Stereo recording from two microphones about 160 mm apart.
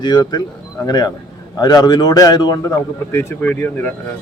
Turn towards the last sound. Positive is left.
turn(degrees=10)  # may be behind; listen again after turning